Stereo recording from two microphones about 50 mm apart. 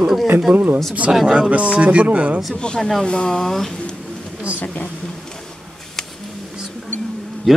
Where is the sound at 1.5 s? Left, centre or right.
Right.